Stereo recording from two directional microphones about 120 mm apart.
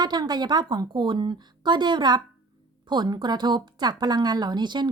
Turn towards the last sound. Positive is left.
turn(degrees=-40)  # may be behind; listen again after turning